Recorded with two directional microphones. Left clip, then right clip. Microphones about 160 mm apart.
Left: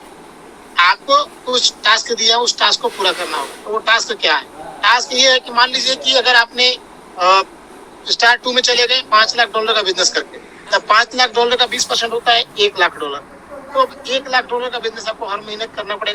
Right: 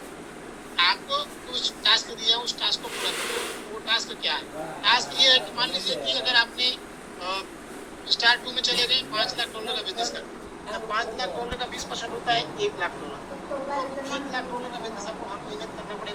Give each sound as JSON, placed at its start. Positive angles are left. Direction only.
{"t": 0.8, "sound": "a man's voice", "side_deg": 75}
{"t": 10.7, "sound": "a man's voice", "side_deg": 75}